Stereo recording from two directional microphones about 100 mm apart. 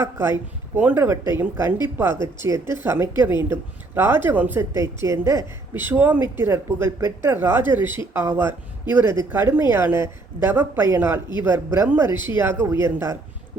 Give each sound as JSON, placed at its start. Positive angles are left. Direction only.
{"t": 0.0, "sound": "speech", "side_deg": -20}